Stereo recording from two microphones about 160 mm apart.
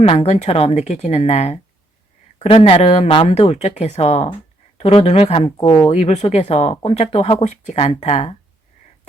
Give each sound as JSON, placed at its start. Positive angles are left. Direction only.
{"t": 0.0, "sound": "speech", "side_deg": 35}